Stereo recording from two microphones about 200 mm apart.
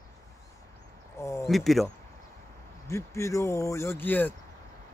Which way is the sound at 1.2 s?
15° left (ahead or behind).